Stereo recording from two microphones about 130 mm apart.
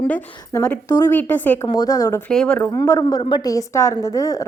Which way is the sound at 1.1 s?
15° left (ahead or behind).